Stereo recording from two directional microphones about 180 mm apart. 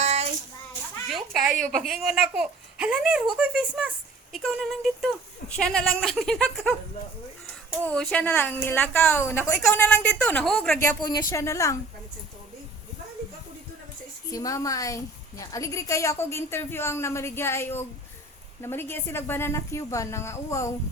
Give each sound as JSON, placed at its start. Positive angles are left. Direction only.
{"t": 0.0, "sound": "child singing", "side_deg": -35}
{"t": 1.0, "sound": "a child's voice", "side_deg": 0}
{"t": 7.8, "sound": "a woman's voice", "side_deg": 5}
{"t": 11.0, "sound": "a woman's voice", "side_deg": 20}
{"t": 14.3, "sound": "a woman's voice", "side_deg": 20}